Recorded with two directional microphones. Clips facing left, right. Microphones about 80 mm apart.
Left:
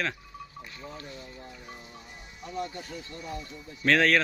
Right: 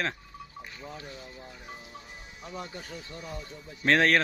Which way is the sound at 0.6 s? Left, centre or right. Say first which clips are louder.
Right 2 dB; centre.